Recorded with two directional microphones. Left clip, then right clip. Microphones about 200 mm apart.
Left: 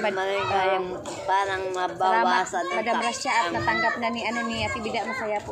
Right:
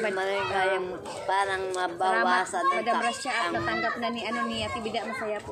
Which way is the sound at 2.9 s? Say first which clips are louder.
Left 2 dB; 5° left (ahead or behind).